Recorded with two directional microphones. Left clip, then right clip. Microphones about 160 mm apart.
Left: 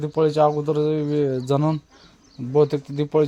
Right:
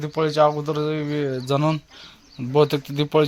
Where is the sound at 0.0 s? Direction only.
45° left (ahead or behind); by 2.0 s 25° left (ahead or behind).